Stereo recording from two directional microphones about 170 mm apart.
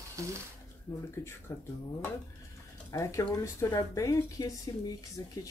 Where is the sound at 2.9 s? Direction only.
15° left (ahead or behind).